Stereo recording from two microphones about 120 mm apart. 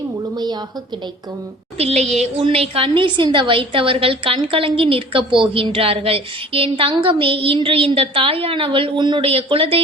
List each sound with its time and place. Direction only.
1.8 s speech: 60° right (ahead or behind)
2.4 s a woman's voice: 50° right (ahead or behind)